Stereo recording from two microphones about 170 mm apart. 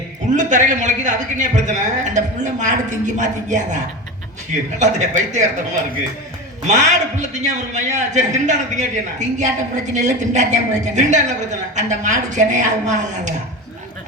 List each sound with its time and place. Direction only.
0.3 s a man's voice: 45° right (ahead or behind)
4.8 s a man's voice: 45° right (ahead or behind)
6.7 s a man's voice: 45° right (ahead or behind)